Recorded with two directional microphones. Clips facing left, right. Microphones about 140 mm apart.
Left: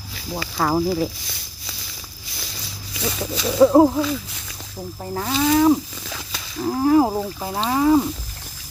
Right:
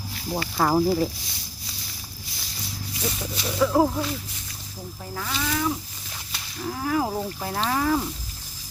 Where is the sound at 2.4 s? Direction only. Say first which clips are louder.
Right 3 dB; 90° left.